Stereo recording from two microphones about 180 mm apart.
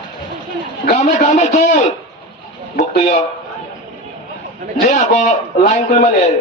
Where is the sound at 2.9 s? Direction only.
40° left (ahead or behind).